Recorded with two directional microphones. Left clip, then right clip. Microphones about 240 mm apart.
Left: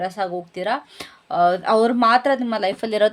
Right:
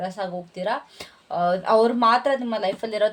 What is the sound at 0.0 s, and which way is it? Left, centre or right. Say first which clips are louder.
Speech: left 4 dB; left.